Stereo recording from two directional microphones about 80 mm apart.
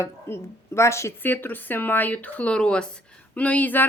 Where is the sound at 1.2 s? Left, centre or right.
Left.